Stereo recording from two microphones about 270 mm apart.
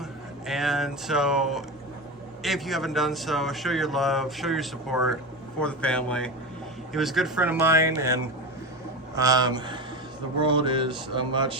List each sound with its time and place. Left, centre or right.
0.4 s a man's voice: centre